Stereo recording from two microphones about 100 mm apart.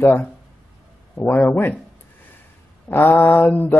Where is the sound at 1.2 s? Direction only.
20° left (ahead or behind).